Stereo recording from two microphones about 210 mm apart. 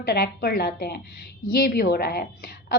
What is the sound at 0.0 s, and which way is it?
A woman's voice, 50° left (ahead or behind).